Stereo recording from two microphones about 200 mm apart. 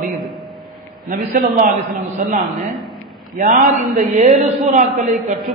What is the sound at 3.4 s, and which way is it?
A man's voice, 40° right (ahead or behind).